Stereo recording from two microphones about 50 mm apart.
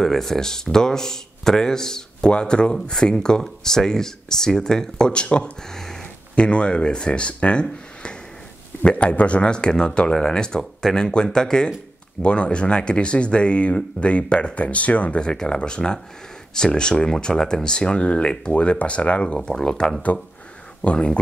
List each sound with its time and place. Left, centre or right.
0.0 s speech: centre
6.3 s speech: left
7.6 s a sound: centre
8.8 s speech: left; by 11.0 s centre
11.0 s speech: centre
20.1 s speech: left
20.8 s speech: left